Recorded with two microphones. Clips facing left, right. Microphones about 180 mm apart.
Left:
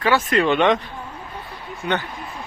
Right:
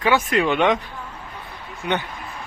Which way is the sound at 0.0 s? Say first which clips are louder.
Left 1 dB; 15° right (ahead or behind).